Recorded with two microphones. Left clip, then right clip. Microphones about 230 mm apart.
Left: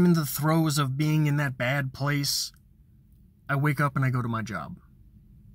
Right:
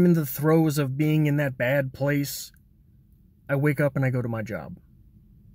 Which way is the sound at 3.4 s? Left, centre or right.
Left.